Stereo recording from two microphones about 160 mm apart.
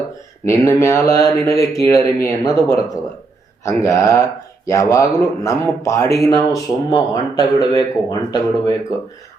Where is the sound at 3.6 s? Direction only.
20° left (ahead or behind).